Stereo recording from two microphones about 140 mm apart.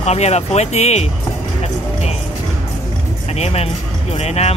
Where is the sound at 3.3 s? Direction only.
50° left (ahead or behind).